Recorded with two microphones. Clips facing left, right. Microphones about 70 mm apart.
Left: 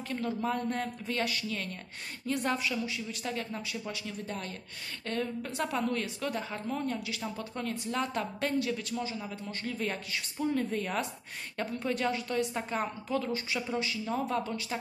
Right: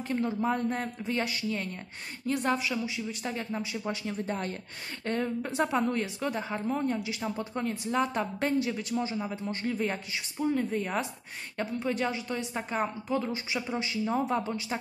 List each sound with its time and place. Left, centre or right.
0.1 s a woman's voice: centre
2.2 s a woman's voice: centre
2.7 s a woman's voice: centre
3.8 s a woman's voice: right